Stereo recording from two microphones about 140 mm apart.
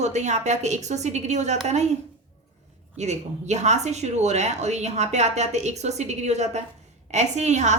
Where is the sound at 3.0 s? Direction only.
55° right (ahead or behind).